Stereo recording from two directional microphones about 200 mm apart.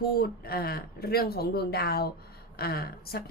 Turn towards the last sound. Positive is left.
turn(degrees=50)  # may be behind; listen again after turning